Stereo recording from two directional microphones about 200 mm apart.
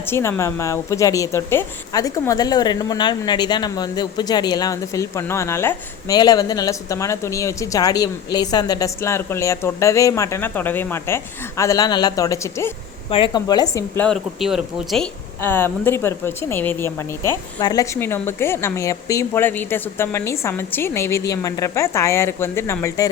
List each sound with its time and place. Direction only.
0.0 s a woman's voice: 15° left (ahead or behind)
13.1 s a woman's voice: 25° left (ahead or behind)